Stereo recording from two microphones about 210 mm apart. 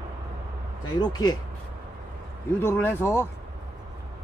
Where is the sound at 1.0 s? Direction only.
20° left (ahead or behind).